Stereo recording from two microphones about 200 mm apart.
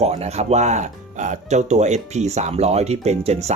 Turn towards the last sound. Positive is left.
turn(degrees=-35)  # may be behind; listen again after turning